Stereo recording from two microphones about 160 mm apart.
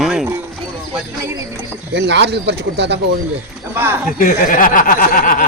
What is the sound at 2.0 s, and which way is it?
Speech, 90° right.